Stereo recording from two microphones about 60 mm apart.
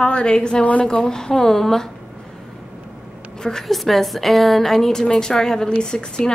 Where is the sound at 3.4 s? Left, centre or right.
Centre.